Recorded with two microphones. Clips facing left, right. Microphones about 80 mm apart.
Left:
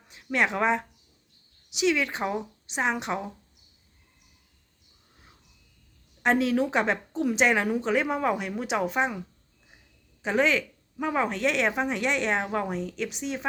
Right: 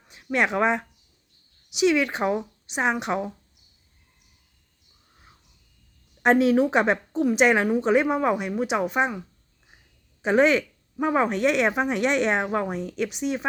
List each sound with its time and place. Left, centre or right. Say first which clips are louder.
0.3 s speech: right 2 dB; centre
6.5 s speech: right 5 dB; centre
10.2 s speech: right 5 dB; centre